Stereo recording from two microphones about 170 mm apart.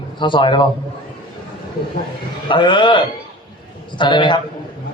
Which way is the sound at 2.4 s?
30° left (ahead or behind).